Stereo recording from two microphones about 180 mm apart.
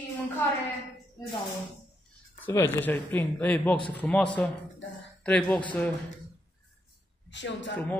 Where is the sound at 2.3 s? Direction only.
10° left (ahead or behind).